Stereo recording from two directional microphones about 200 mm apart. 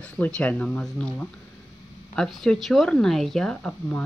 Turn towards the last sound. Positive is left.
turn(degrees=5)  # may be behind; listen again after turning